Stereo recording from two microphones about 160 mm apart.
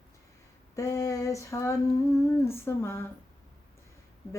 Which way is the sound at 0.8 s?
20° left (ahead or behind).